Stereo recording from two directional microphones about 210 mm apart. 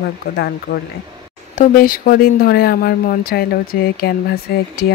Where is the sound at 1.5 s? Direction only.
40° left (ahead or behind).